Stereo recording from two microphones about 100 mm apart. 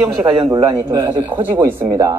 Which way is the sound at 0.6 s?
45° right (ahead or behind).